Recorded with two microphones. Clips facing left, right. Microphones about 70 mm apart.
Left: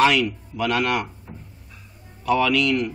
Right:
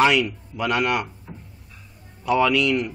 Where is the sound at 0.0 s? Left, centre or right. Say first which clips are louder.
Even; centre.